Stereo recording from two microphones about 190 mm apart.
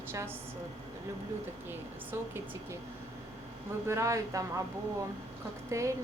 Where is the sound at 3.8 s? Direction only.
15° right (ahead or behind).